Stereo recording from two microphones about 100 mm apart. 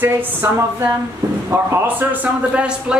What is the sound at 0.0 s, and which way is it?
A woman's voice, 20° right (ahead or behind).